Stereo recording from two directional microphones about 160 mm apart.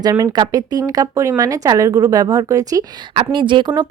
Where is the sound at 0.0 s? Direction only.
25° right (ahead or behind).